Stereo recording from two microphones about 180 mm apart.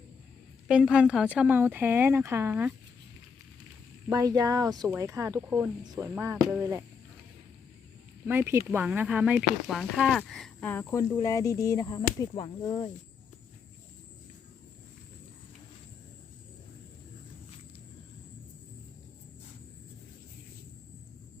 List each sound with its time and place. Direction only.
0.7 s speech: 5° right (ahead or behind)
4.1 s speech: 20° right (ahead or behind)
8.3 s speech: 10° right (ahead or behind); by 12.9 s 25° left (ahead or behind)